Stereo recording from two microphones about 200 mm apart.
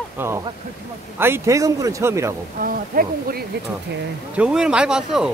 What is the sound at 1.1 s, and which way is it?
A man's voice, 10° right (ahead or behind).